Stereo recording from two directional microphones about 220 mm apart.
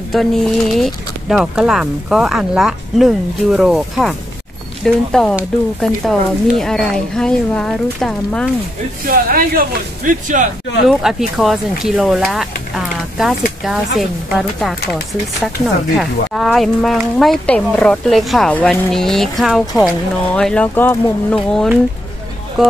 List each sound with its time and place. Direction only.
0.1 s speech: centre (ahead or behind)
9.0 s speech: 40° right (ahead or behind)
10.9 s speech: centre (ahead or behind)